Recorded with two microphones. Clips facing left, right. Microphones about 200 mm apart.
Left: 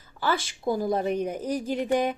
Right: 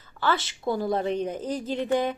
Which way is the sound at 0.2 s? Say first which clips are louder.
Right 1 dB; 10° left (ahead or behind).